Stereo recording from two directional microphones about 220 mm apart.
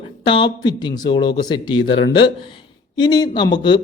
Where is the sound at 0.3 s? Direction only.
20° left (ahead or behind).